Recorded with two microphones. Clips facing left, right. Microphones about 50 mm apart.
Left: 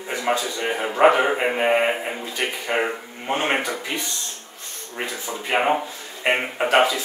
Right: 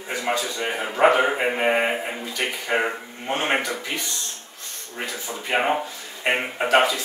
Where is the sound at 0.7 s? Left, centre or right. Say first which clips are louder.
Left 2 dB; centre.